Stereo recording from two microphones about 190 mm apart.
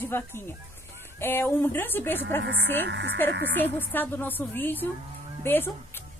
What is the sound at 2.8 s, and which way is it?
Speech, 65° right (ahead or behind).